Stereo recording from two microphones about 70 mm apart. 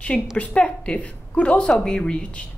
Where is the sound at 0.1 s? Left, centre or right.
Centre.